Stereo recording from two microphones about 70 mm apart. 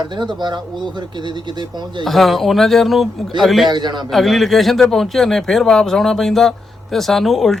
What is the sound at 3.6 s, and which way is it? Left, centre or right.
Speech, right.